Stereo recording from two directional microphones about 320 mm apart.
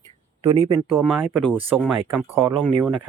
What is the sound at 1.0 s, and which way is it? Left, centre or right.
Speech, centre.